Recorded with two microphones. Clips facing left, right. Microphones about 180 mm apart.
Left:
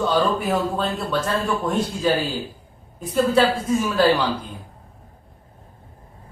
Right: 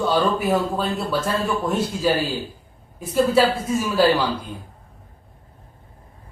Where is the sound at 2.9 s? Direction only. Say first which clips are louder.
Right 1 dB; 5° right (ahead or behind).